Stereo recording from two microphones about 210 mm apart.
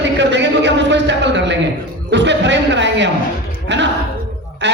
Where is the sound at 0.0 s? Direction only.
55° right (ahead or behind).